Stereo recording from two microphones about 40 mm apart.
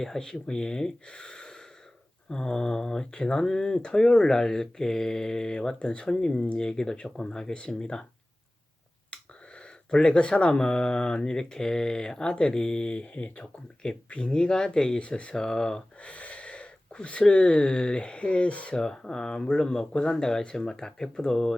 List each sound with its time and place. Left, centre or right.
0.0 s speech: centre
1.0 s gasp: left
2.3 s speech: centre
6.7 s speech: centre
6.9 s speech: left
7.3 s speech: centre
9.6 s speech: left
16.0 s speech: left
18.7 s speech: centre